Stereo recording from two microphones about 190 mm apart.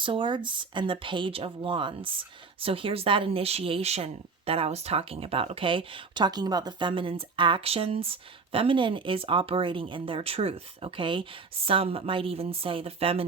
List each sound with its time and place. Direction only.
0.0 s speech: 25° right (ahead or behind)